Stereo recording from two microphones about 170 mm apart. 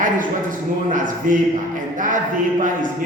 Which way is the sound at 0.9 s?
50° right (ahead or behind).